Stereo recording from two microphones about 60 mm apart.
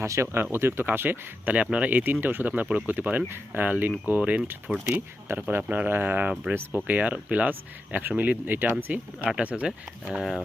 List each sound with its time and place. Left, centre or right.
0.0 s speech: right
1.7 s speech: right
4.7 s speech: centre
5.4 s speech: right
6.7 s speech: right